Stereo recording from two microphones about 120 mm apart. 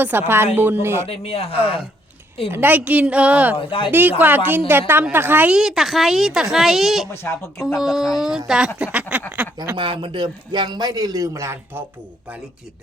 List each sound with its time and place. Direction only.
0.0 s a woman's voice: 15° right (ahead or behind)
1.0 s speech: 55° left (ahead or behind)
2.5 s a woman's voice: 15° right (ahead or behind)
3.6 s speech: 45° left (ahead or behind)
4.2 s a woman's voice: 15° right (ahead or behind)
5.5 s speech: 5° right (ahead or behind)
7.1 s speech: 20° left (ahead or behind)
7.6 s a woman's voice: 5° right (ahead or behind)
9.7 s a man's voice: 45° right (ahead or behind); by 11.9 s 20° right (ahead or behind)